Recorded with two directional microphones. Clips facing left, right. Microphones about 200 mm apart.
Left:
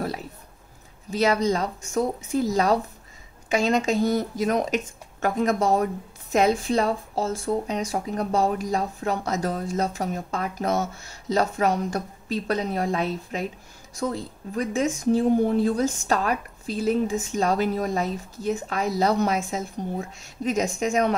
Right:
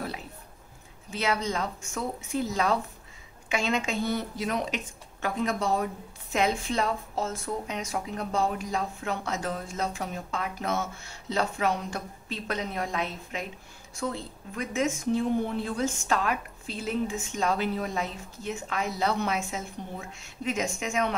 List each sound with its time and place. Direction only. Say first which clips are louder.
1.1 s a woman's voice: left 7 dB; 40° left (ahead or behind)